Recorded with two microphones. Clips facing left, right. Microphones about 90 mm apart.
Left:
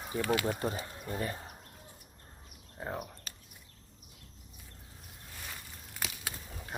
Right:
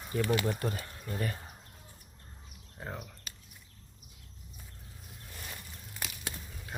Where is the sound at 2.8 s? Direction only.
15° left (ahead or behind).